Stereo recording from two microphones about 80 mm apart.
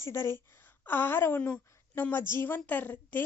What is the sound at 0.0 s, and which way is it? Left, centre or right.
A woman's voice, left.